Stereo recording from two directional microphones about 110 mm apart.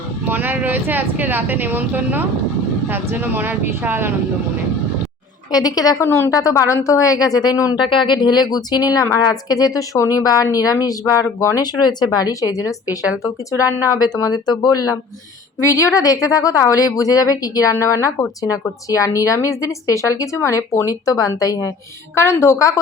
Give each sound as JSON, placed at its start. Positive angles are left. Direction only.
{"t": 0.3, "sound": "speech", "side_deg": -20}
{"t": 5.5, "sound": "a woman's voice", "side_deg": 35}
{"t": 6.1, "sound": "a woman's voice", "side_deg": 25}
{"t": 7.8, "sound": "a woman's voice", "side_deg": 50}